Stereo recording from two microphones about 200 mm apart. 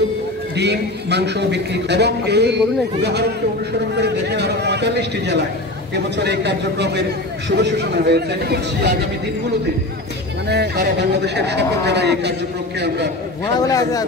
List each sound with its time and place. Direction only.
0.6 s a man's voice: 60° right (ahead or behind)
10.5 s a man's voice: 55° right (ahead or behind)
13.6 s speech: 20° left (ahead or behind)